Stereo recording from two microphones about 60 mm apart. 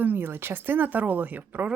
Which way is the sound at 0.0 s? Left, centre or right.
Right.